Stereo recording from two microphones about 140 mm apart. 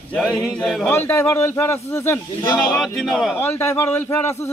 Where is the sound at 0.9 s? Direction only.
15° left (ahead or behind).